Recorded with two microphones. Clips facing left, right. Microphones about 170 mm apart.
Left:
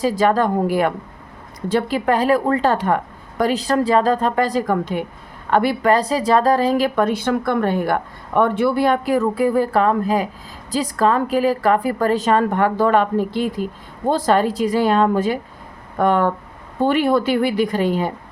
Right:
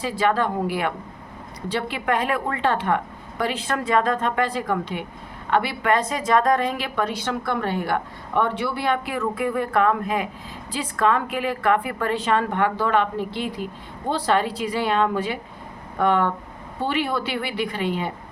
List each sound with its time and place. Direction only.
0.0 s a woman's voice: 40° left (ahead or behind)